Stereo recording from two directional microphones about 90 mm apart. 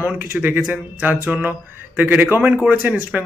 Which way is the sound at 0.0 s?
20° right (ahead or behind).